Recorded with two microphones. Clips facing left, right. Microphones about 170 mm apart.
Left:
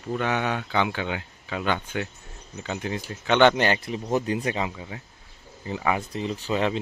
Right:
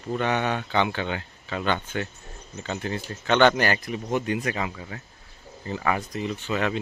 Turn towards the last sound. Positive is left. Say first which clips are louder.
# left 1 dB
turn(degrees=30)  # may be behind; listen again after turning